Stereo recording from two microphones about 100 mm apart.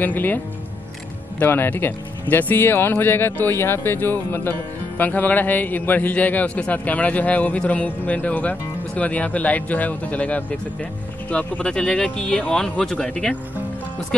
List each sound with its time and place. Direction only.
0.0 s speech: 20° left (ahead or behind)
1.4 s speech: 20° left (ahead or behind)